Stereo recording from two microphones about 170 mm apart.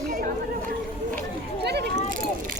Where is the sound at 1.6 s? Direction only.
75° right (ahead or behind).